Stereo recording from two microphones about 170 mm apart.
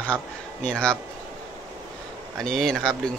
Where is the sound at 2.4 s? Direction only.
Centre (ahead or behind).